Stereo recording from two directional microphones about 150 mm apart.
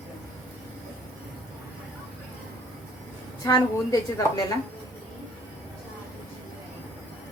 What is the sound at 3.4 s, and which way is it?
A woman's voice, 30° left (ahead or behind).